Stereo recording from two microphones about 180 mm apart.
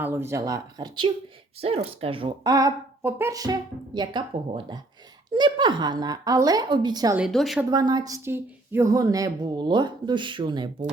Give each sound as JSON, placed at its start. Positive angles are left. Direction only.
{"t": 0.0, "sound": "a woman's voice", "side_deg": -10}
{"t": 7.2, "sound": "a woman's voice", "side_deg": 0}
{"t": 7.7, "sound": "a woman's voice", "side_deg": -25}